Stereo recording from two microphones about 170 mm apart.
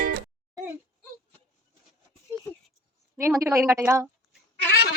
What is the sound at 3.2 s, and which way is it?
Speech, 15° right (ahead or behind).